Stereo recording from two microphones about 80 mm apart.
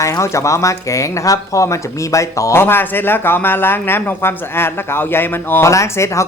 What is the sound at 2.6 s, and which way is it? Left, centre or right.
Speech, left.